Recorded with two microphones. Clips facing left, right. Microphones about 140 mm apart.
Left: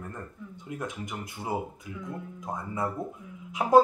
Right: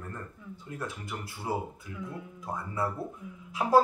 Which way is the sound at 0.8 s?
20° left (ahead or behind).